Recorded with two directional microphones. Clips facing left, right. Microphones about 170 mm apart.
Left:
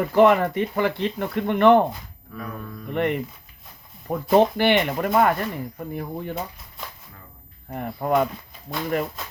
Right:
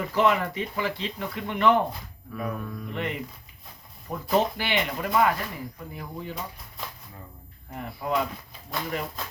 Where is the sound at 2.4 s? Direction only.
5° right (ahead or behind).